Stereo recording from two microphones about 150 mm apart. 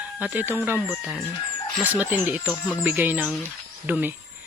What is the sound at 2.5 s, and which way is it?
Speech, 10° left (ahead or behind).